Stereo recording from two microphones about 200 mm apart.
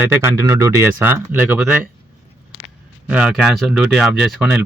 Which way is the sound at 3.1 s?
5° right (ahead or behind).